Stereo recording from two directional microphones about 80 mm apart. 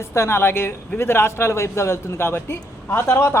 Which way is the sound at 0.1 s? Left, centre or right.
Left.